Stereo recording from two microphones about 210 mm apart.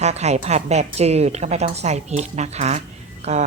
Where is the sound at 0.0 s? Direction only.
30° right (ahead or behind).